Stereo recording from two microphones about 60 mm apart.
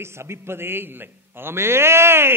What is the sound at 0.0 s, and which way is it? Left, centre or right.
A man's voice, right.